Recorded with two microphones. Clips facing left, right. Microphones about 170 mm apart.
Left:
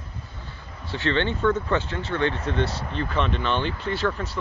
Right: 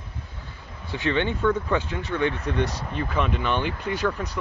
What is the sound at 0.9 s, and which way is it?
Speech, 10° right (ahead or behind).